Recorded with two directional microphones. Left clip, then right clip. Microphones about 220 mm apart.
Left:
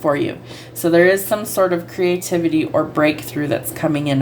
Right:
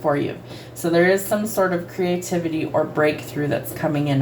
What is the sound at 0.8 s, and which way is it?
A woman's voice, 50° left (ahead or behind).